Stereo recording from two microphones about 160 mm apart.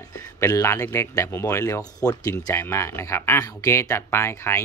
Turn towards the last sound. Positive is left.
turn(degrees=15)  # may be behind; listen again after turning